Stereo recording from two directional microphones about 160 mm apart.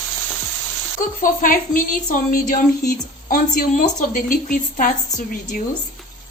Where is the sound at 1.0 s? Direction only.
55° left (ahead or behind).